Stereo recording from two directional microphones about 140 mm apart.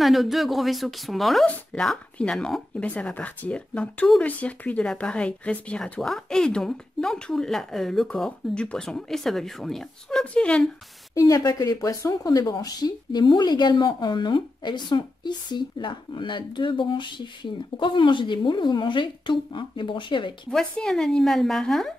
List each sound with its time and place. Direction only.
0.0 s speech: centre (ahead or behind)
11.1 s speech: 25° left (ahead or behind)
20.5 s speech: 5° left (ahead or behind)